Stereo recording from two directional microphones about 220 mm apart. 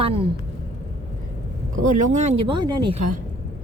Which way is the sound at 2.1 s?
30° right (ahead or behind).